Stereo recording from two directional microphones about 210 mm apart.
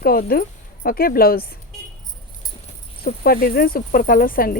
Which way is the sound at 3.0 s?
45° left (ahead or behind).